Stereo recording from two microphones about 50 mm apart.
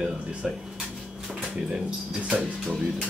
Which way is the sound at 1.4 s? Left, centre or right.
Centre.